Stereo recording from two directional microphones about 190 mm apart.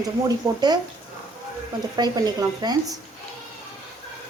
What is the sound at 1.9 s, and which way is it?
Speech, 20° right (ahead or behind).